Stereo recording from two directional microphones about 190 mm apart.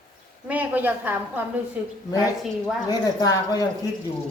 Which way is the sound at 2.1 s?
20° left (ahead or behind).